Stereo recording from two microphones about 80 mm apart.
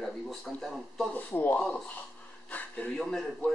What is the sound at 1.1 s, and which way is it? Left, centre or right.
Speech, left.